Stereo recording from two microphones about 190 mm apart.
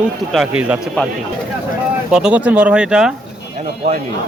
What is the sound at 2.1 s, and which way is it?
Speech, 5° right (ahead or behind).